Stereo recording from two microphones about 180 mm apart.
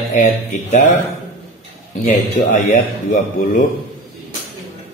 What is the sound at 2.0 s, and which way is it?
A man's voice, 45° left (ahead or behind).